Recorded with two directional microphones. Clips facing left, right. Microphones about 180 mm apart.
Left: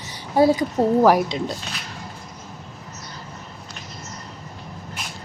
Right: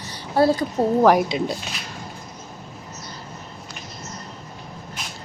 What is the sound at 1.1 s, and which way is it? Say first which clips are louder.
Speech: right 1 dB; 5° right (ahead or behind).